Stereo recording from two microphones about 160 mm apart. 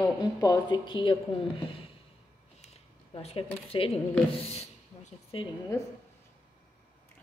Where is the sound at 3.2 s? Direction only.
40° left (ahead or behind).